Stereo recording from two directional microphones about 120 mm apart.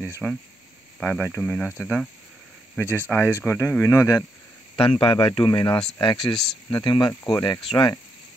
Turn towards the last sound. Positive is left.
turn(degrees=35)  # may be behind; listen again after turning